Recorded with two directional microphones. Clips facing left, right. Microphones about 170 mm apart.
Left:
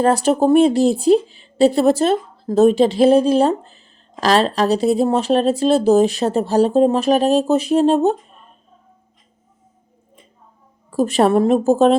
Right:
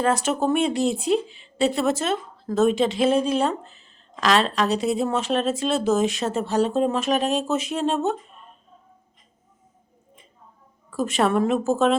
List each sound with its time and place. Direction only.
0.0 s speech: 35° left (ahead or behind)
10.9 s speech: 35° left (ahead or behind)